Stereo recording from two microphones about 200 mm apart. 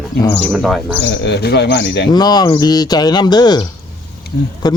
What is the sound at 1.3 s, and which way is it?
Speech, 55° left (ahead or behind).